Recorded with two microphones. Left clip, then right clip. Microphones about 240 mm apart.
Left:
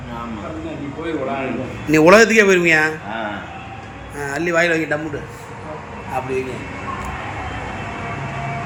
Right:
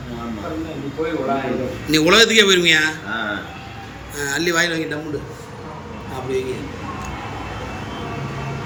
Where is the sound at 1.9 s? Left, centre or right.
Centre.